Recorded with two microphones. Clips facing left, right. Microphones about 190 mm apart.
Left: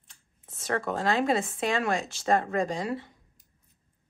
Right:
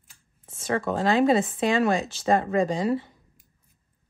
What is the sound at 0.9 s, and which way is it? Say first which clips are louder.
Speech: right 6 dB; 25° right (ahead or behind).